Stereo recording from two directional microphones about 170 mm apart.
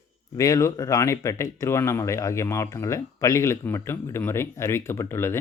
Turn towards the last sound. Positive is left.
turn(degrees=15)  # may be behind; listen again after turning